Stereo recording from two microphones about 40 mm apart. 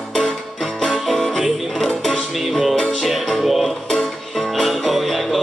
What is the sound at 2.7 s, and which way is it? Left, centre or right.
Music, centre.